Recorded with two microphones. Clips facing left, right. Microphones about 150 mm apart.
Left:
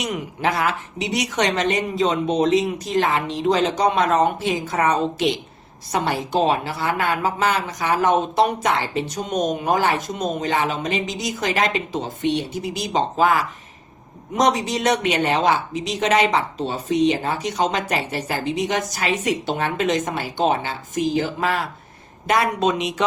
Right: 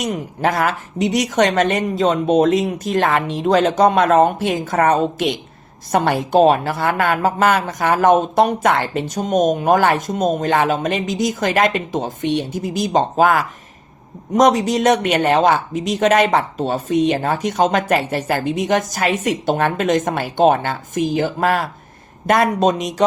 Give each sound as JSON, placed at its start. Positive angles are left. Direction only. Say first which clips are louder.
{"t": 0.0, "sound": "a woman's voice", "louder": "right 4 dB", "side_deg": -45}